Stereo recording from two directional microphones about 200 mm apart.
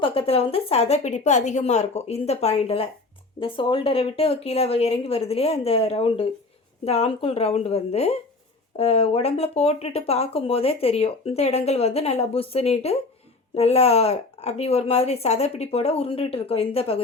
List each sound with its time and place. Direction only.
0.0 s speech: 30° left (ahead or behind)